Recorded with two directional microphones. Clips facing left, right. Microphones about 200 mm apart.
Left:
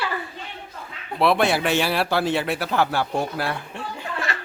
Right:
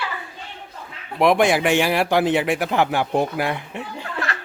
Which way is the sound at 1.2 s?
15° right (ahead or behind).